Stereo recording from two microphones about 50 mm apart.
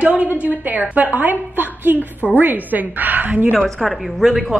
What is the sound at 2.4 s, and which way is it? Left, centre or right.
A woman's voice, right.